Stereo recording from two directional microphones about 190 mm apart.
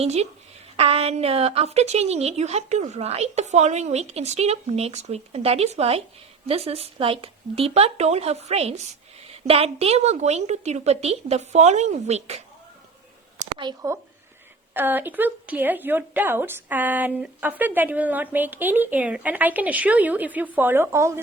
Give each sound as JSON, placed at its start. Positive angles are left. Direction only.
{"t": 0.0, "sound": "a woman's voice", "side_deg": -35}
{"t": 13.6, "sound": "a woman's voice", "side_deg": -20}